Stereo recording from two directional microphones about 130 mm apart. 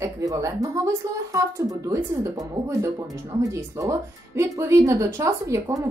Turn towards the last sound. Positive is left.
turn(degrees=-25)  # may be behind; listen again after turning